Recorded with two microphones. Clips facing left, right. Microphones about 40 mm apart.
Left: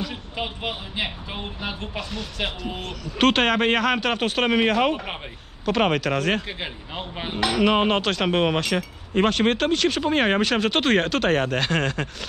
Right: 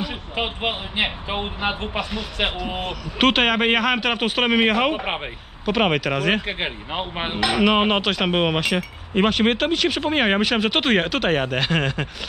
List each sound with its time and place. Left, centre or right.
0.4 s speech: right
2.7 s speech: centre
4.9 s speech: right
5.7 s speech: centre
6.4 s speech: right
8.0 s speech: centre